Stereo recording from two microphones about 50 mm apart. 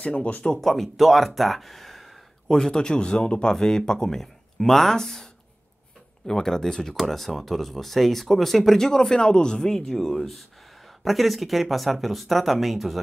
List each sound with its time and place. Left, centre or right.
0.0 s speech: left
0.5 s speech: centre
2.4 s speech: centre